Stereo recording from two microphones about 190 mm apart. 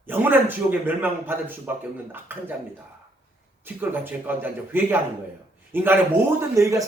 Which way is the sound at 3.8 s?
10° right (ahead or behind).